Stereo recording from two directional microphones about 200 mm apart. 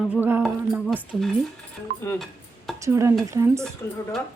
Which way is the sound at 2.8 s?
15° right (ahead or behind).